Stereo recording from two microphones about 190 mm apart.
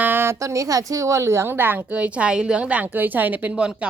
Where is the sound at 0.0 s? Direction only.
10° right (ahead or behind).